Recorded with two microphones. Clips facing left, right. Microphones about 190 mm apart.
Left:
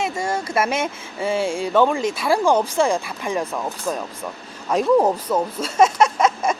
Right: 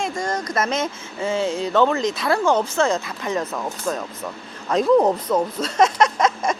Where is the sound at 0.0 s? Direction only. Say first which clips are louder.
Left 1 dB; 5° left (ahead or behind).